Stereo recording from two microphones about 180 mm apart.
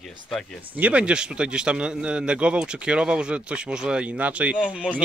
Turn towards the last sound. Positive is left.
turn(degrees=-5)  # may be behind; listen again after turning